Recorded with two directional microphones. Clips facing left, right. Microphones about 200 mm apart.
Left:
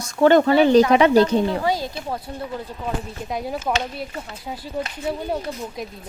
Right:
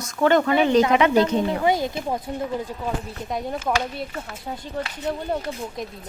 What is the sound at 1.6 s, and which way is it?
Speech, 20° right (ahead or behind).